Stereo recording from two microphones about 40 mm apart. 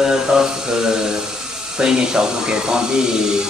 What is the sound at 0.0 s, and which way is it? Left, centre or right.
Mantra, centre.